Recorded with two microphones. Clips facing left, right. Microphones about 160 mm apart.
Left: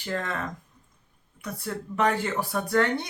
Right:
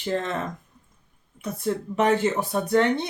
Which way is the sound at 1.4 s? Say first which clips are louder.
Right 6 dB; 20° right (ahead or behind).